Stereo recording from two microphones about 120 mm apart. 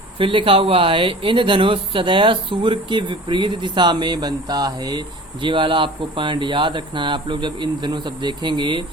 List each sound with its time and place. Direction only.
0.2 s speech: 45° right (ahead or behind)